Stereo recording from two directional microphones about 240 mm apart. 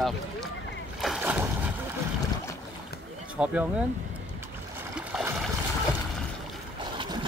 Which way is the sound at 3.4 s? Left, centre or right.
Centre.